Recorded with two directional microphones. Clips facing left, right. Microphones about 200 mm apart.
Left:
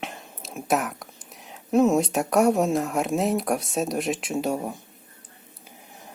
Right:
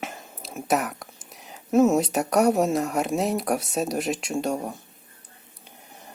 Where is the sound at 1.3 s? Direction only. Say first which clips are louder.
Even; centre (ahead or behind).